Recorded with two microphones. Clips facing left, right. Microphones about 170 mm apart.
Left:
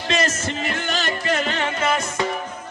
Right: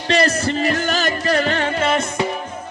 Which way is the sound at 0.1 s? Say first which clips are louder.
Right 6 dB; 35° right (ahead or behind).